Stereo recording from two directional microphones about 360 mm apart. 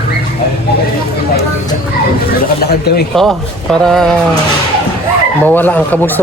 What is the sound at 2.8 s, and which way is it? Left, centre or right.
Speech, left.